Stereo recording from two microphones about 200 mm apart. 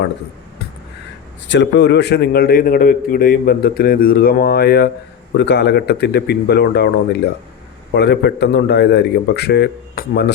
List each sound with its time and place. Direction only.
1.5 s a man's voice: 60° left (ahead or behind)
7.9 s a man's voice: 55° left (ahead or behind)